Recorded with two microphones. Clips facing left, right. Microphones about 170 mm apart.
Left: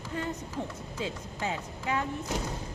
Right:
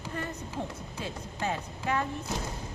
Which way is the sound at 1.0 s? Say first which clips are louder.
Even; 15° left (ahead or behind).